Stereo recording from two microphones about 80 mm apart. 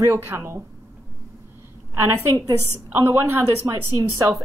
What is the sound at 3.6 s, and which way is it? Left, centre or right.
Speech, right.